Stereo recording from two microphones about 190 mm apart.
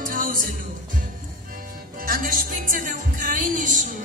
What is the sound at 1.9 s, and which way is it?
Speech, 50° right (ahead or behind).